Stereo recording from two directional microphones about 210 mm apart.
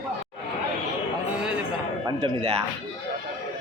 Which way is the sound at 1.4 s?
5° right (ahead or behind).